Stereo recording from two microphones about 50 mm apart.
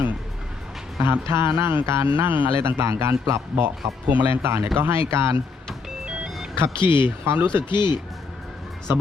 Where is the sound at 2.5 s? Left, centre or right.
Right.